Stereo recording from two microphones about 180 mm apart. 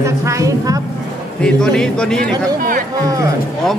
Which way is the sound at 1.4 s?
5° left (ahead or behind).